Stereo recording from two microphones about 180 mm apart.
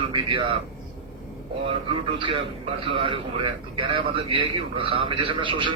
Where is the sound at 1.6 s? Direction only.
30° right (ahead or behind).